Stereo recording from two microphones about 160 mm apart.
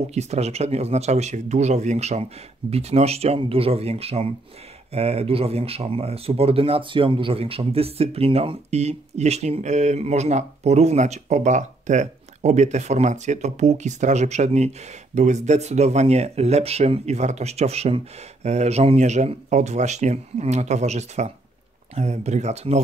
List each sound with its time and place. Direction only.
0.1 s speech: 45° right (ahead or behind)